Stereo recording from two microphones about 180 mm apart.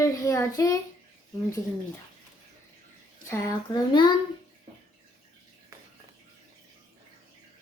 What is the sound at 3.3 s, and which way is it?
Speech, 20° left (ahead or behind).